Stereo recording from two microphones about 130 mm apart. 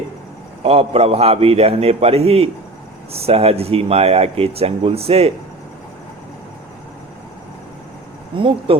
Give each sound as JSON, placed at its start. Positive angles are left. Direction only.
{"t": 0.6, "sound": "speech", "side_deg": -50}
{"t": 8.4, "sound": "speech", "side_deg": -45}